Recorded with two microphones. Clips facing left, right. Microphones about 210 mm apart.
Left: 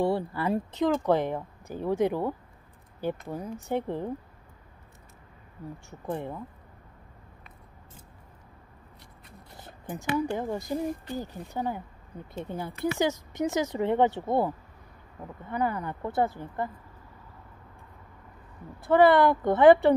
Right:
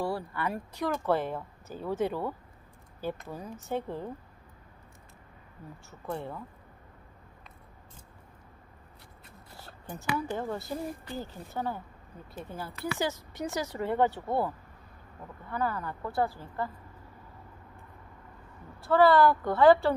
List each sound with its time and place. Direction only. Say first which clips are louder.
0.0 s speech: left 5 dB; 25° left (ahead or behind)
5.9 s speech: left 3 dB; 15° left (ahead or behind)
9.6 s speech: left 5 dB; 20° left (ahead or behind)
18.8 s speech: left 2 dB; 20° left (ahead or behind)